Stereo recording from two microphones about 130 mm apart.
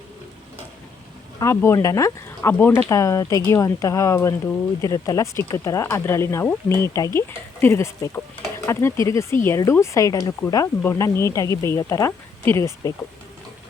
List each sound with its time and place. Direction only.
1.4 s speech: 20° left (ahead or behind)